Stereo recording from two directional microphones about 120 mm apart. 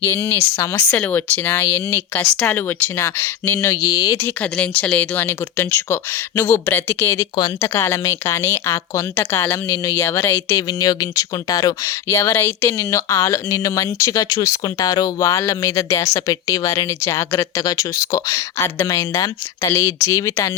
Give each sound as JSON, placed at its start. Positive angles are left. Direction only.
{"t": 0.0, "sound": "speech", "side_deg": 20}
{"t": 4.5, "sound": "speech", "side_deg": 10}
{"t": 10.7, "sound": "speech", "side_deg": 30}